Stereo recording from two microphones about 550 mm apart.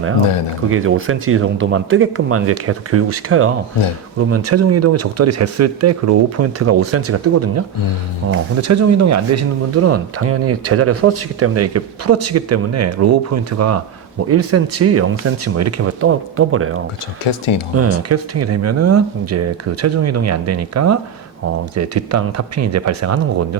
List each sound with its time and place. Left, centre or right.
0.7 s speech: right
17.2 s speech: left
17.7 s speech: right